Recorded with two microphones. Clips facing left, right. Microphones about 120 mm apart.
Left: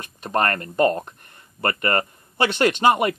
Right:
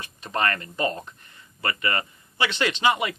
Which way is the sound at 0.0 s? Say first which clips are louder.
Left 4 dB; 50° left (ahead or behind).